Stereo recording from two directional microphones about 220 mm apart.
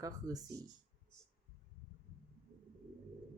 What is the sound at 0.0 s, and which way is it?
Speech, 15° right (ahead or behind).